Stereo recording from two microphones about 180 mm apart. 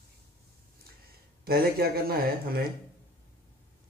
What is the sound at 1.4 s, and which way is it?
Speech, 60° right (ahead or behind).